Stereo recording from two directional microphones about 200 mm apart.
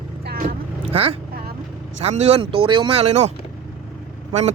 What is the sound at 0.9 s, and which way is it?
Speech, 30° right (ahead or behind).